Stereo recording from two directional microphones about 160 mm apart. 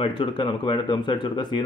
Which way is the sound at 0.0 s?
30° left (ahead or behind).